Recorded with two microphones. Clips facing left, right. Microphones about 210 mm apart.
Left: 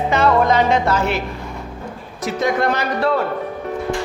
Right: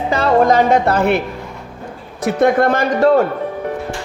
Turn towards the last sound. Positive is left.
turn(degrees=-45)  # may be behind; listen again after turning